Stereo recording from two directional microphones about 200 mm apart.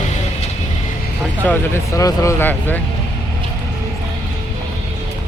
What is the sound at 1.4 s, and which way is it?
Speech, 10° left (ahead or behind).